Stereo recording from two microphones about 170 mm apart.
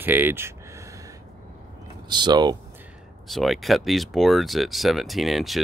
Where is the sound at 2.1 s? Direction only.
25° right (ahead or behind).